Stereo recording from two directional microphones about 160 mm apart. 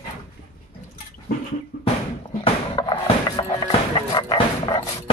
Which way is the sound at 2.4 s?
30° left (ahead or behind).